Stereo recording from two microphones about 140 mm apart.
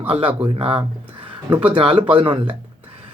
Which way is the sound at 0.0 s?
40° right (ahead or behind).